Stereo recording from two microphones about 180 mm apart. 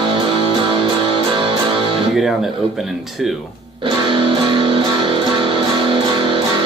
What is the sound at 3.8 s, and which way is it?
Music, 30° right (ahead or behind).